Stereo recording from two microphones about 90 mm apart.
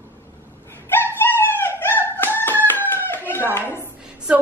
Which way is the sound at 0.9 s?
25° left (ahead or behind).